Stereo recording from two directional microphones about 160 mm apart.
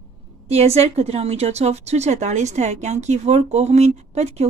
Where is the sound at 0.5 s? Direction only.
40° right (ahead or behind).